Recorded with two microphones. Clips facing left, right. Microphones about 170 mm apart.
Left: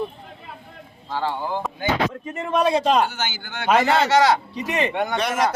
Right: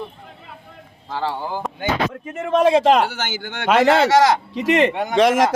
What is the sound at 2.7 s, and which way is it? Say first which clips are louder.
Speech: right 4 dB; 85° right.